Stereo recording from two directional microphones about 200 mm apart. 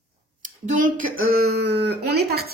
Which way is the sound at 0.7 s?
40° right (ahead or behind).